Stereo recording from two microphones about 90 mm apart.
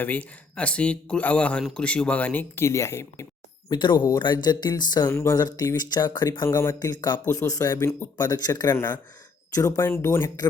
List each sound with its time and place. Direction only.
0.0 s speech: 15° left (ahead or behind); by 3.2 s 35° left (ahead or behind)
3.7 s speech: 55° left (ahead or behind)
5.0 s speech: 35° left (ahead or behind)
8.7 s speech: 25° left (ahead or behind)